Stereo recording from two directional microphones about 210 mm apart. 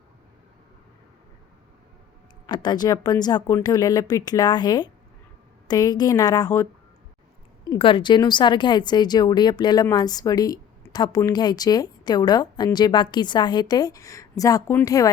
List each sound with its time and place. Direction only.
2.5 s a woman's voice: 20° left (ahead or behind)